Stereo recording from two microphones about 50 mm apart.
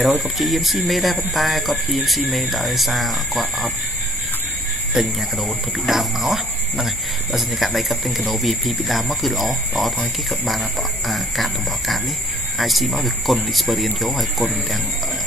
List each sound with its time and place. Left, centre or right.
0.0 s speech: centre
4.9 s speech: centre